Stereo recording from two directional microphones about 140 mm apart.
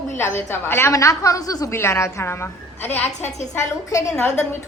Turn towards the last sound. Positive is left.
turn(degrees=15)  # may be behind; listen again after turning